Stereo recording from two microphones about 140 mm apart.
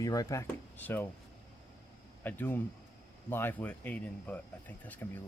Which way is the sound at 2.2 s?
15° left (ahead or behind).